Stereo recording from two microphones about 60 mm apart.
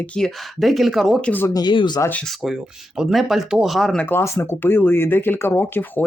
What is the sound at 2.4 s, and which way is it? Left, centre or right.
Speech, centre.